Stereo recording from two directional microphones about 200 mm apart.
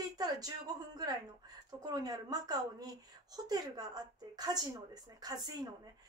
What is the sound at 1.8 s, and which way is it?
A woman's voice, 20° right (ahead or behind).